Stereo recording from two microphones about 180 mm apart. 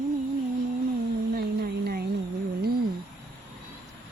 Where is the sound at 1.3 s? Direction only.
60° right (ahead or behind).